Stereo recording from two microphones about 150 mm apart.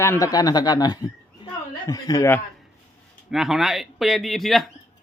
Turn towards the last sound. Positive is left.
turn(degrees=0)  # may be behind; listen again after turning